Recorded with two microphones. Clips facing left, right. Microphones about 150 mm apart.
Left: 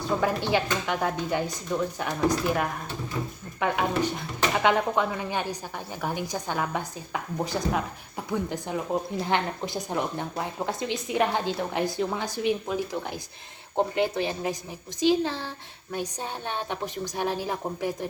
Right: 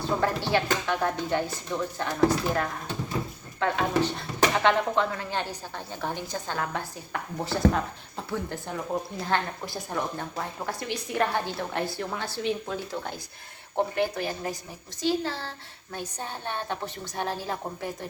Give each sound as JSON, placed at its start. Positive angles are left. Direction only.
{"t": 0.2, "sound": "speech", "side_deg": 15}